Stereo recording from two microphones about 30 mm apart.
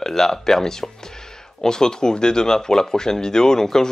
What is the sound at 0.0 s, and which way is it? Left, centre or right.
Speech, centre.